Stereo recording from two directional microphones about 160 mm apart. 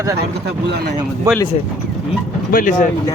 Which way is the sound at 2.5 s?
60° left (ahead or behind).